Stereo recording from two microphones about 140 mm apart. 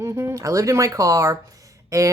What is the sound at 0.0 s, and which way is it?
Speech, 20° right (ahead or behind).